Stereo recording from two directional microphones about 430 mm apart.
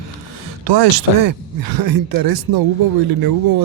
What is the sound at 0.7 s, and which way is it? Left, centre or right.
Speech, right.